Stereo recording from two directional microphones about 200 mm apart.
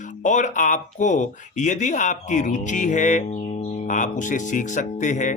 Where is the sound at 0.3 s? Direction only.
40° left (ahead or behind).